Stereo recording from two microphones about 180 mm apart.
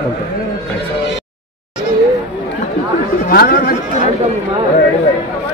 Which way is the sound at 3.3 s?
55° left (ahead or behind).